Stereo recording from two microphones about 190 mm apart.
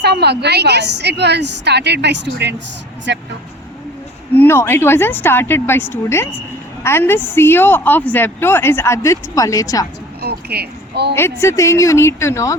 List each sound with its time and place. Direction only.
0.0 s a woman's voice: 60° right (ahead or behind)
4.4 s a woman's voice: 10° left (ahead or behind)
10.2 s a sound: 55° right (ahead or behind)
11.1 s a woman's voice: 15° left (ahead or behind)